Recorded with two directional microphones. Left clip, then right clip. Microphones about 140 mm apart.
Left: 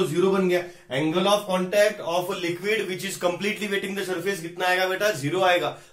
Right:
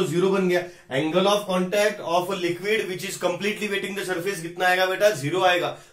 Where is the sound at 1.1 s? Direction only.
30° right (ahead or behind).